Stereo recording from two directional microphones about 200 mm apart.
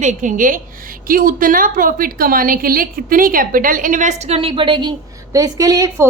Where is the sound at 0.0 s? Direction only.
40° right (ahead or behind).